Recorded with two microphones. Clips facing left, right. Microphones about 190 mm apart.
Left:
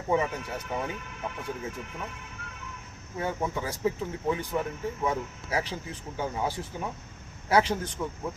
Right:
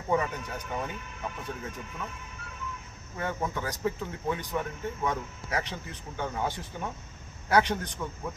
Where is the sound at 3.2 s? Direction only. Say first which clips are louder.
Left 2 dB; 10° left (ahead or behind).